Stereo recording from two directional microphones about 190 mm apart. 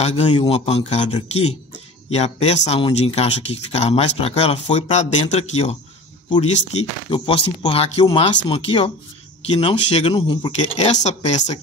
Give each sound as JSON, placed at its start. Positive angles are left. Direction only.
{"t": 0.0, "sound": "speech", "side_deg": 30}
{"t": 2.0, "sound": "speech", "side_deg": 35}